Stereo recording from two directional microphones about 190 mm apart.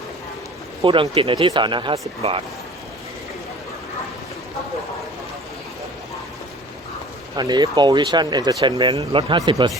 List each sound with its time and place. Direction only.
0.8 s speech: 25° right (ahead or behind)
7.3 s speech: 20° right (ahead or behind)